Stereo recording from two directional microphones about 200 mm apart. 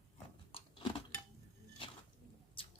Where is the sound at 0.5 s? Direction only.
25° left (ahead or behind).